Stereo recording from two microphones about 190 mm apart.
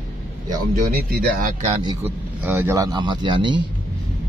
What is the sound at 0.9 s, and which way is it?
Speech, 50° right (ahead or behind).